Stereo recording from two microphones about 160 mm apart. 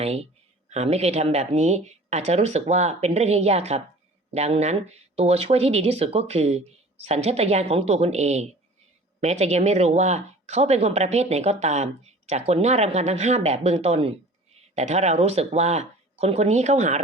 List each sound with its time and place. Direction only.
0.0 s speech: 40° right (ahead or behind)